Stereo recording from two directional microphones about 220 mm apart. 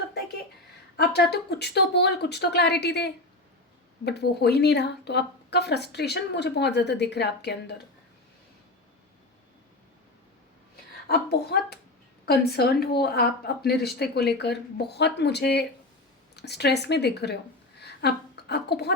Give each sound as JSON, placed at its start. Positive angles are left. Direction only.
{"t": 0.9, "sound": "a woman's voice", "side_deg": 50}
{"t": 11.1, "sound": "a woman's voice", "side_deg": 50}